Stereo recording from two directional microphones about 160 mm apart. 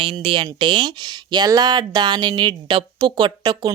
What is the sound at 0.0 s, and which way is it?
Speech, 35° right (ahead or behind).